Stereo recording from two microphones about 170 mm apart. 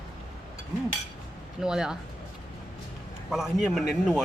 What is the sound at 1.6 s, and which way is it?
Speech, 5° right (ahead or behind).